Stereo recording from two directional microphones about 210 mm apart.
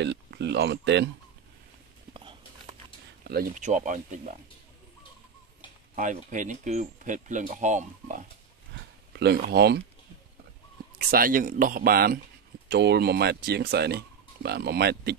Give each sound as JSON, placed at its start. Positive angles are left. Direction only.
{"t": 0.0, "sound": "speech", "side_deg": -55}
{"t": 2.1, "sound": "a sound", "side_deg": -25}
{"t": 3.3, "sound": "speech", "side_deg": -45}
{"t": 5.9, "sound": "speech", "side_deg": -35}
{"t": 9.1, "sound": "speech", "side_deg": -50}
{"t": 11.0, "sound": "speech", "side_deg": -45}